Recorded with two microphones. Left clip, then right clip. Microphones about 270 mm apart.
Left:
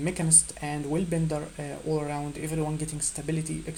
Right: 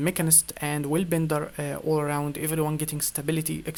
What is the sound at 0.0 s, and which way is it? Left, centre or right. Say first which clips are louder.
Speech: right 1 dB; right.